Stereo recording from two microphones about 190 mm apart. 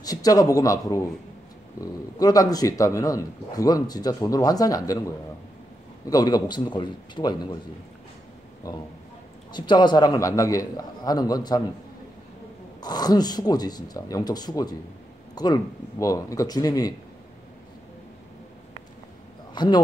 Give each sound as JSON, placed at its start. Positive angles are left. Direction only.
{"t": 0.0, "sound": "a man's voice", "side_deg": 20}
{"t": 9.5, "sound": "speech", "side_deg": 25}
{"t": 12.8, "sound": "speech", "side_deg": 20}
{"t": 19.5, "sound": "speech", "side_deg": 20}